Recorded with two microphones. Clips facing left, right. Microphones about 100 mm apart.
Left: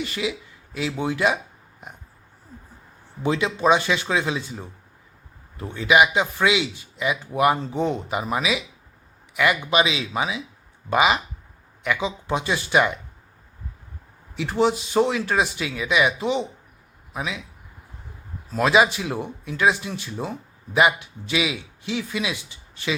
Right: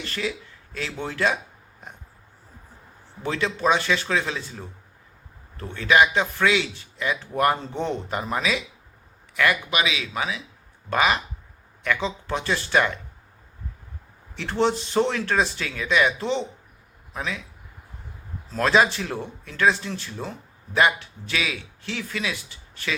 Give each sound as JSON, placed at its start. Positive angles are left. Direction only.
{"t": 0.0, "sound": "speech", "side_deg": 10}
{"t": 3.2, "sound": "a man's voice", "side_deg": 15}
{"t": 9.6, "sound": "a man's voice", "side_deg": 25}
{"t": 14.3, "sound": "a man's voice", "side_deg": 5}
{"t": 18.5, "sound": "a man's voice", "side_deg": 10}